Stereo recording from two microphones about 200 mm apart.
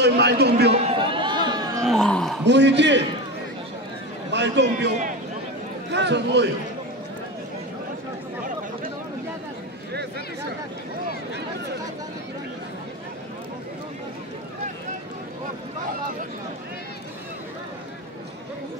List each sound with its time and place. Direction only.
0.0 s a man's voice: 55° right (ahead or behind)
0.7 s a sound: 30° right (ahead or behind)
1.8 s wail: centre (ahead or behind)
2.4 s a man's voice: 60° right (ahead or behind)
4.3 s a man's voice: 60° right (ahead or behind)